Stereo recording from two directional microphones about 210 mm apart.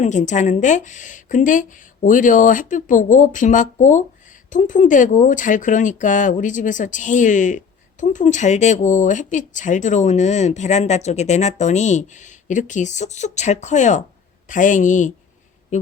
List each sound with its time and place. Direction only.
0.0 s speech: 35° left (ahead or behind)